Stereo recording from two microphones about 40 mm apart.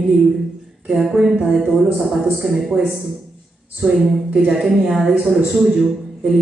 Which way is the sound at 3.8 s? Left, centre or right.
Centre.